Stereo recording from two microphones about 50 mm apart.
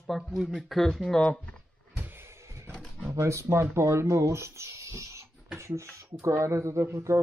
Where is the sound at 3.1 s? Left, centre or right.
Right.